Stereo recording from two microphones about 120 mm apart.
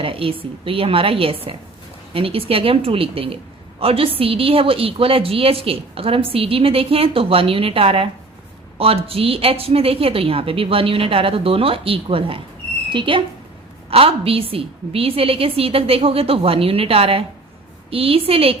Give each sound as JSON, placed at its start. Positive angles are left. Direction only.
{"t": 0.0, "sound": "a woman's voice", "side_deg": -50}